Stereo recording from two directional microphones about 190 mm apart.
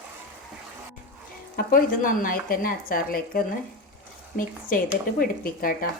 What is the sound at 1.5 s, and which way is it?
A woman's voice, 45° left (ahead or behind).